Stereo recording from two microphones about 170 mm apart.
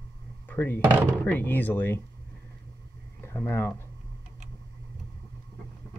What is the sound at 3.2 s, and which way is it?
Speech, 15° left (ahead or behind).